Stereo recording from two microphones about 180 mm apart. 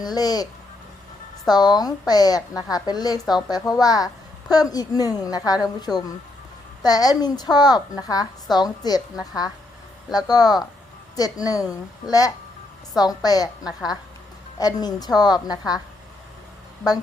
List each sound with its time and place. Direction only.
0.0 s a woman's voice: 20° left (ahead or behind)
1.5 s a woman's voice: 25° left (ahead or behind)
10.1 s a woman's voice: 20° left (ahead or behind)
14.6 s a woman's voice: 20° left (ahead or behind)